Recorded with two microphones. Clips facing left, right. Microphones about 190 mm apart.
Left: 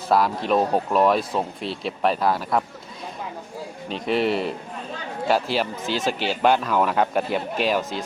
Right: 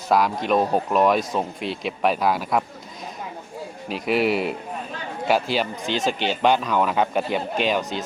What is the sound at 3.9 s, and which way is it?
A man's voice, 5° right (ahead or behind).